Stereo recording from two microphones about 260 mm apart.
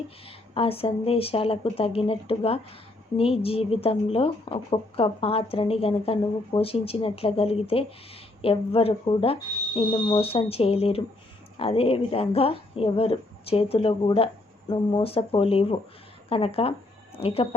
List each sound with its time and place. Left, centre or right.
0.3 s a woman's voice: left